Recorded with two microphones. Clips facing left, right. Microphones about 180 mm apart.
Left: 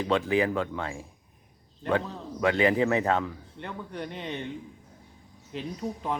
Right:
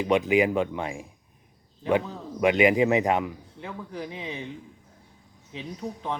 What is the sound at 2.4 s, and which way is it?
Speech, 15° right (ahead or behind).